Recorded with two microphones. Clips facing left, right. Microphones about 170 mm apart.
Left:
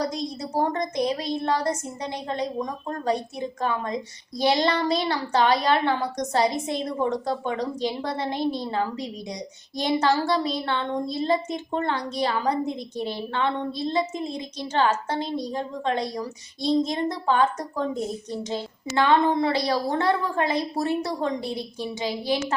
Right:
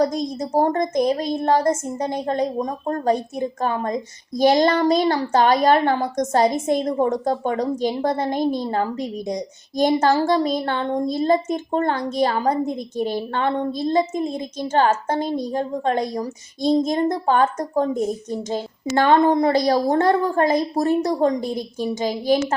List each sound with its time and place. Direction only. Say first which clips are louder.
0.0 s a woman's voice: right 7 dB; 45° right (ahead or behind)